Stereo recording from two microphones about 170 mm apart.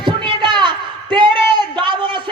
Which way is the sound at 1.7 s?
25° right (ahead or behind).